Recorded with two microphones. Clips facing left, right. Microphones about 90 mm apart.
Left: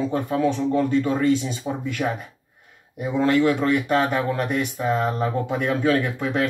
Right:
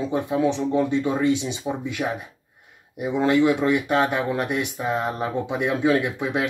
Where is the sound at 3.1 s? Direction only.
15° right (ahead or behind).